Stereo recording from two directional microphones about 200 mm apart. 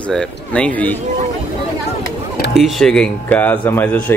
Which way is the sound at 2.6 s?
Centre (ahead or behind).